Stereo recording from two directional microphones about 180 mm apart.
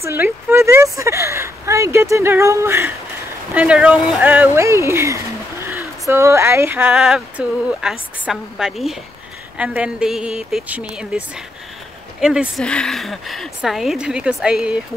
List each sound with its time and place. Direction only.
0.0 s speech: 15° right (ahead or behind)